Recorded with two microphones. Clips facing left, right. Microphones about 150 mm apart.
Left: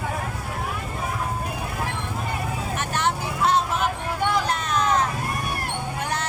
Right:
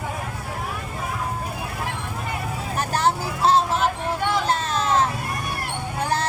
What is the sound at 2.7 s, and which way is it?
Vehicle, 35° right (ahead or behind).